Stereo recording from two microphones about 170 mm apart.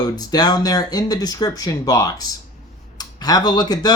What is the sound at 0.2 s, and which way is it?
Speech, 25° left (ahead or behind).